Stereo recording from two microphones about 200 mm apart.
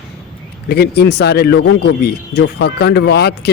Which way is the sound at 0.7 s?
55° left (ahead or behind).